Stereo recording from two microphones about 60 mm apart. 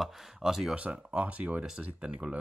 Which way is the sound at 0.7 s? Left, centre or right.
Centre.